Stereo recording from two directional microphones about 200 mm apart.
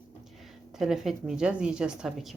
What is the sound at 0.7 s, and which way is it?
Speech, centre (ahead or behind).